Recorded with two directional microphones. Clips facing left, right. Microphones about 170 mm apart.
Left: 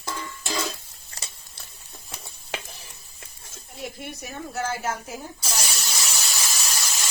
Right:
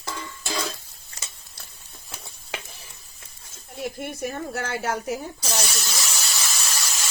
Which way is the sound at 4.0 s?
55° right (ahead or behind).